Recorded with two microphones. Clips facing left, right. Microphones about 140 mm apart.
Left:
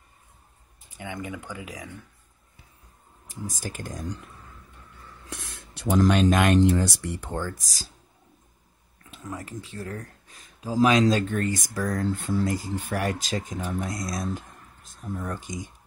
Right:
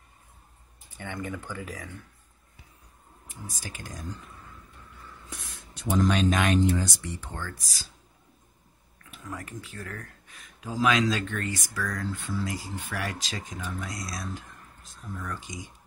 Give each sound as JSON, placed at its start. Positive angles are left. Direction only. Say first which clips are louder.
{"t": 0.9, "sound": "speech", "louder": "left 1 dB", "side_deg": 10}
{"t": 3.3, "sound": "speech", "louder": "left 7 dB", "side_deg": 45}
{"t": 5.3, "sound": "speech", "louder": "left 6 dB", "side_deg": 70}
{"t": 7.5, "sound": "speech", "louder": "left 2 dB", "side_deg": 40}
{"t": 9.1, "sound": "speech", "louder": "left 3 dB", "side_deg": 25}